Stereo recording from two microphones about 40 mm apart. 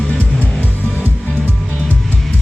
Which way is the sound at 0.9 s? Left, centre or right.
Left.